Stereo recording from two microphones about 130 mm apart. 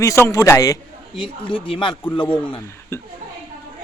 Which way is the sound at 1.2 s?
40° left (ahead or behind).